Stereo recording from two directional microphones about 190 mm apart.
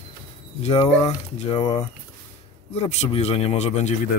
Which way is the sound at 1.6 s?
25° left (ahead or behind).